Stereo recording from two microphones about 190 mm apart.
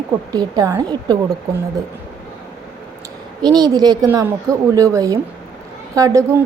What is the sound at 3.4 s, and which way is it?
A woman's voice, 20° right (ahead or behind).